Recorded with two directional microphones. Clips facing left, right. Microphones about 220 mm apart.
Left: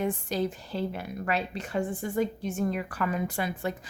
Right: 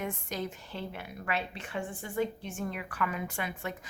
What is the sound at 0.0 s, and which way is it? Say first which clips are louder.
Speech: left 7 dB; 30° left (ahead or behind).